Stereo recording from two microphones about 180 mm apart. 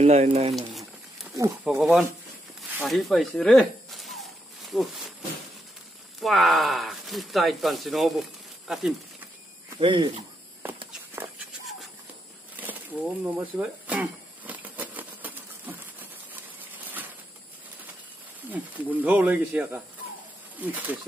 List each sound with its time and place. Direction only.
0.0 s speech: 35° right (ahead or behind)
0.6 s a sound: centre (ahead or behind)
1.3 s speech: 15° right (ahead or behind)
1.7 s speech: 5° right (ahead or behind)
2.8 s snake: centre (ahead or behind)
6.2 s speech: centre (ahead or behind)
9.8 s speech: 25° right (ahead or behind)
13.2 s a sound: 10° right (ahead or behind)
18.5 s speech: 10° right (ahead or behind)